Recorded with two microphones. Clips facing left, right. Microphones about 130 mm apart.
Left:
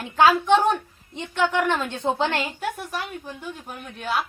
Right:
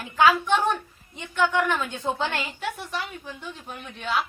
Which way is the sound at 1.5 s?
25° left (ahead or behind).